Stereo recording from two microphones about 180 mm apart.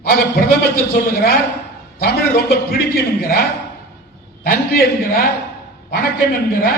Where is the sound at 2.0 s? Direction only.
55° left (ahead or behind).